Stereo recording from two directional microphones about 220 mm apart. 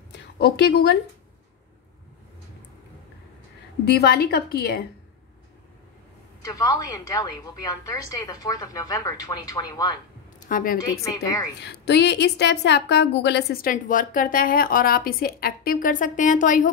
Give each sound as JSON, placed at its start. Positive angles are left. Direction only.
{"t": 0.1, "sound": "speech", "side_deg": 50}
{"t": 3.8, "sound": "a woman's voice", "side_deg": 45}
{"t": 6.4, "sound": "a woman's voice", "side_deg": 15}
{"t": 10.5, "sound": "a woman's voice", "side_deg": 40}
{"t": 10.8, "sound": "a woman's voice", "side_deg": 15}
{"t": 11.6, "sound": "a woman's voice", "side_deg": 50}